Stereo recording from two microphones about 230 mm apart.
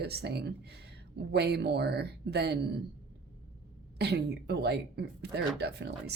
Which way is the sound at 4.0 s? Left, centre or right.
Right.